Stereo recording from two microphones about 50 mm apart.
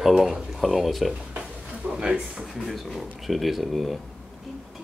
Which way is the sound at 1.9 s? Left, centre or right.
Centre.